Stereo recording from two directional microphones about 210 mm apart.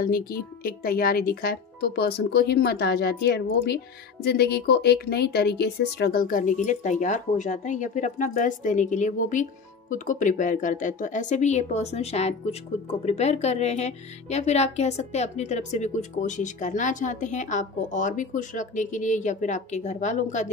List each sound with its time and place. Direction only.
0.0 s speech: 45° left (ahead or behind)